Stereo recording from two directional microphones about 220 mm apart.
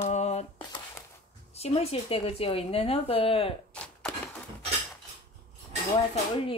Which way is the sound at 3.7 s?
5° left (ahead or behind).